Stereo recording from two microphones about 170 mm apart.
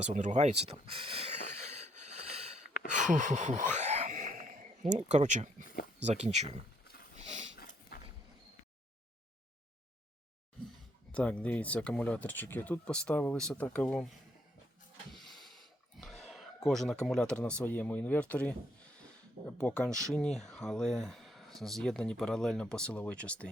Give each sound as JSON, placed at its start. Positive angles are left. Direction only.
{"t": 0.1, "sound": "speech", "side_deg": -45}
{"t": 1.8, "sound": "a sound", "side_deg": -40}
{"t": 6.0, "sound": "speech", "side_deg": -40}
{"t": 7.2, "sound": "sniff", "side_deg": -40}
{"t": 7.5, "sound": "dog", "side_deg": 60}
{"t": 11.1, "sound": "speech", "side_deg": 10}
{"t": 15.1, "sound": "a sound", "side_deg": 0}
{"t": 16.0, "sound": "speech", "side_deg": 0}
{"t": 19.9, "sound": "speech", "side_deg": -20}
{"t": 20.1, "sound": "speech", "side_deg": 5}